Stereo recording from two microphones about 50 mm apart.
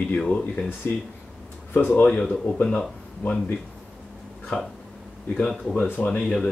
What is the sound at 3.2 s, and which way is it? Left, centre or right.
Speech, left.